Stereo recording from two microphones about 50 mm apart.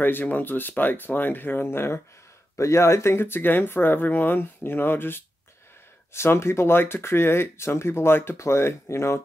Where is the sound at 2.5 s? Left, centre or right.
Left.